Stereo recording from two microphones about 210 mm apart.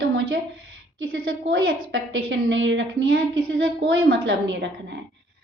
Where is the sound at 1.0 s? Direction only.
70° right (ahead or behind).